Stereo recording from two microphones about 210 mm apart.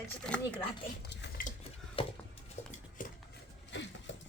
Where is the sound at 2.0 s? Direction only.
25° left (ahead or behind).